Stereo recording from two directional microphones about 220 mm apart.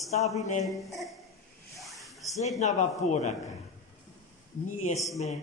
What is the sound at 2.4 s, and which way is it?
Speech, 30° left (ahead or behind).